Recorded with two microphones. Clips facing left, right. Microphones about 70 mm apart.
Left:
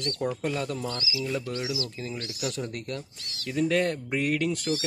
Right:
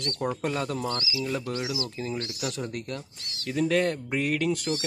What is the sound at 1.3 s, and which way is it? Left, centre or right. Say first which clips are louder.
Speech: right 1 dB; centre.